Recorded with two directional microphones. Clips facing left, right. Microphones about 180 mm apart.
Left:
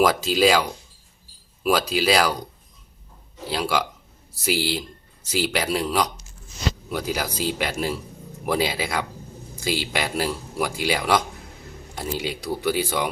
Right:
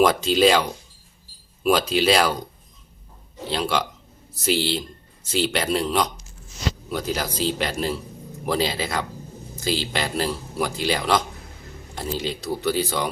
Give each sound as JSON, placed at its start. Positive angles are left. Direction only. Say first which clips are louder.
{"t": 0.0, "sound": "speech", "louder": "right 1 dB", "side_deg": 5}
{"t": 3.4, "sound": "speech", "louder": "even", "side_deg": 5}